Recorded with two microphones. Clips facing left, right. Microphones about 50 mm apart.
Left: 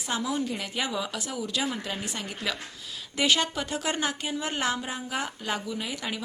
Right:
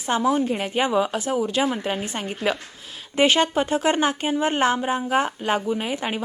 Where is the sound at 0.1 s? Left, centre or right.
Right.